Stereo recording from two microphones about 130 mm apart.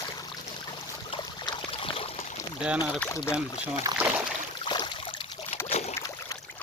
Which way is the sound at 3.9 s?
25° right (ahead or behind).